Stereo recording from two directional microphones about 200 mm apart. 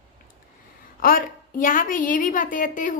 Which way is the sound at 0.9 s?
45° left (ahead or behind).